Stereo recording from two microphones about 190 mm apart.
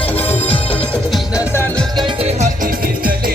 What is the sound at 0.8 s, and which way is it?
Music, 10° left (ahead or behind).